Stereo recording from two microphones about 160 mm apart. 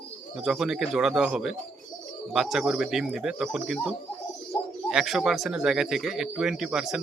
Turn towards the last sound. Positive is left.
turn(degrees=0)  # may be behind; listen again after turning